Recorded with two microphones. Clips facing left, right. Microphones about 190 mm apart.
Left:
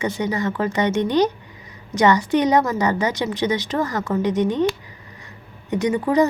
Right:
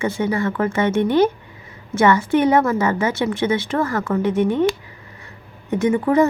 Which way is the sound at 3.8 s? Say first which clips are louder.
Right 2 dB; 40° left (ahead or behind).